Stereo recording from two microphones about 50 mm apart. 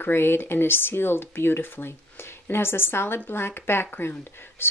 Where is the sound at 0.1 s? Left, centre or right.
Left.